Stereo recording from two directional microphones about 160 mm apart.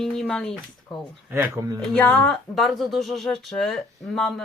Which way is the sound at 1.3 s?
15° right (ahead or behind).